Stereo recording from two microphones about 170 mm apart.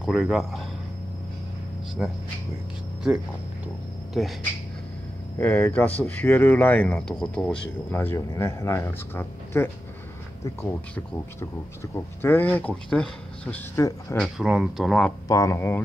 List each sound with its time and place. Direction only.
0.0 s speech: centre (ahead or behind)
2.0 s speech: centre (ahead or behind)
4.2 s speech: centre (ahead or behind)
5.4 s speech: 10° left (ahead or behind)
11.3 s speech: 15° left (ahead or behind)
13.7 s speech: 20° left (ahead or behind)
14.2 s speech: 5° right (ahead or behind)
15.2 s speech: 20° left (ahead or behind)